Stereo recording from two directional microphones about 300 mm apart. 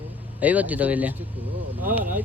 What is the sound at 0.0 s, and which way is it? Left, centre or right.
Speech, centre.